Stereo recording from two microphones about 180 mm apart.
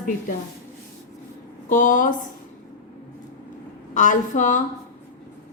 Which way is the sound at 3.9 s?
45° left (ahead or behind).